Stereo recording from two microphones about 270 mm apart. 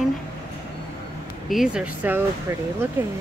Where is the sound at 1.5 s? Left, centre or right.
Centre.